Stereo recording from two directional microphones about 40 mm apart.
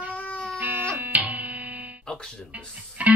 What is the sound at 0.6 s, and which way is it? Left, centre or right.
Music, right.